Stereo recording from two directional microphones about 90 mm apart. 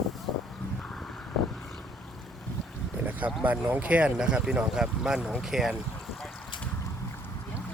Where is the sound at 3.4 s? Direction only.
15° right (ahead or behind).